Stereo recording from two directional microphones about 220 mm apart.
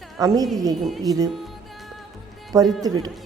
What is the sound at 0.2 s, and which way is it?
A woman's voice, 15° right (ahead or behind).